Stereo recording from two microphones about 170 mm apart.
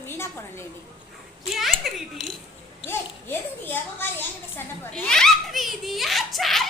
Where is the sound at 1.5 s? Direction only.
Centre (ahead or behind).